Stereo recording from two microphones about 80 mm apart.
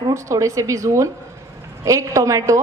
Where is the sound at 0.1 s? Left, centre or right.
Right.